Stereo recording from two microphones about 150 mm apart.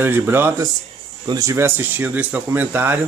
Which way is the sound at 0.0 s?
15° right (ahead or behind).